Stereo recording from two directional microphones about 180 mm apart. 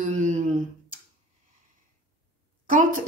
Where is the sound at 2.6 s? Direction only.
50° right (ahead or behind).